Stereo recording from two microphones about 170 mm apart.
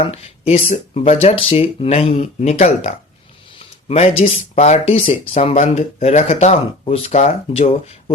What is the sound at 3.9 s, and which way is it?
Speech, 40° left (ahead or behind).